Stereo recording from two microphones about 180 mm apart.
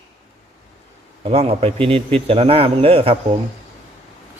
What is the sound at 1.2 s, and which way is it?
A man's voice, 35° right (ahead or behind).